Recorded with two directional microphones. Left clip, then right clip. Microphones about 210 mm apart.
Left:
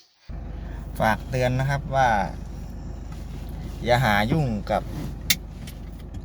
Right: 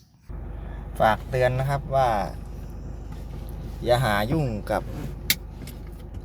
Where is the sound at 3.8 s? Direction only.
Centre (ahead or behind).